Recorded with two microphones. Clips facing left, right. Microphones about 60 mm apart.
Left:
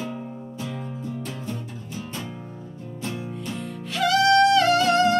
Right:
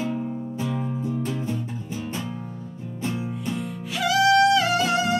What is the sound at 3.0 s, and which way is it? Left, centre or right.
Music, centre.